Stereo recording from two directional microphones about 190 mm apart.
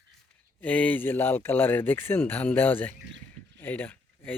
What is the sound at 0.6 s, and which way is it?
Speech, 10° left (ahead or behind).